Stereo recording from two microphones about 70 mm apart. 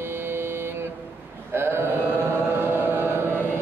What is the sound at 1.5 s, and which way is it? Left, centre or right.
Chant, right.